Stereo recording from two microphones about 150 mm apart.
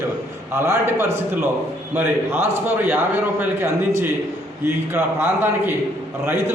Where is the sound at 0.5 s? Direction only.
20° right (ahead or behind).